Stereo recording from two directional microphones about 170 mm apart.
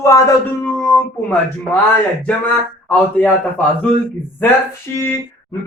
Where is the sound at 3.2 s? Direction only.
10° left (ahead or behind).